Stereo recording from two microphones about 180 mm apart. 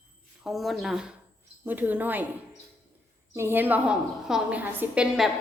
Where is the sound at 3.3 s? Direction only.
15° right (ahead or behind).